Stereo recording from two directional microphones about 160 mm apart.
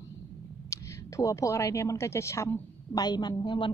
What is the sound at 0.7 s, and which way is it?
A woman's voice, 20° left (ahead or behind).